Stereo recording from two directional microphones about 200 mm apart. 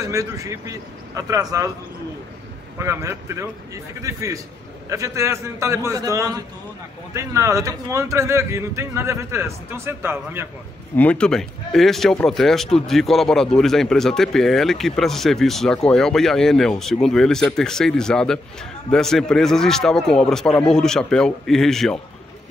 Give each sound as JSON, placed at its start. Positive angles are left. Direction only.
{"t": 0.0, "sound": "speech", "side_deg": -15}
{"t": 2.8, "sound": "speech", "side_deg": -15}
{"t": 11.0, "sound": "speech", "side_deg": 5}